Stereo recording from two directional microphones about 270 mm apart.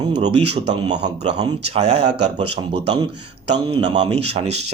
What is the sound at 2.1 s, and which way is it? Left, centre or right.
Speech, right.